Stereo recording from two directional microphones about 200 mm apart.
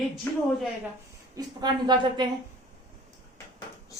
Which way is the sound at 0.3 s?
10° left (ahead or behind).